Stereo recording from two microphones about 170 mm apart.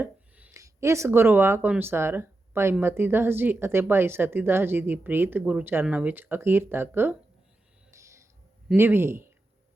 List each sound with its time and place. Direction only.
0.0 s speech: 10° right (ahead or behind)
7.9 s a sound: 15° right (ahead or behind)
8.7 s speech: 15° right (ahead or behind)